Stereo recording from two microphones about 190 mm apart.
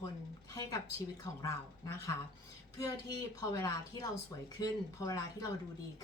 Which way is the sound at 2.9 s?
15° left (ahead or behind).